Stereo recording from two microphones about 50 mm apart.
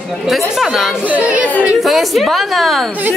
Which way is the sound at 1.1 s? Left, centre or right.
Right.